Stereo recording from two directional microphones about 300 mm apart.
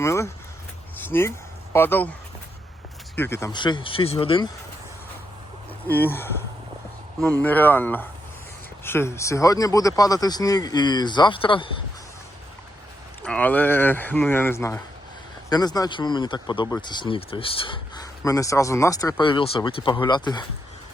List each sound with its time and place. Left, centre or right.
0.0 s a sound: centre
1.7 s speech: centre
3.2 s speech: centre
5.9 s speech: centre
13.2 s speech: centre